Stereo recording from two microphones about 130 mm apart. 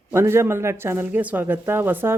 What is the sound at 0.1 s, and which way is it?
Speech, 20° right (ahead or behind).